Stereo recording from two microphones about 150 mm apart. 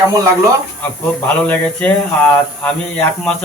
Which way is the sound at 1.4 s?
10° left (ahead or behind).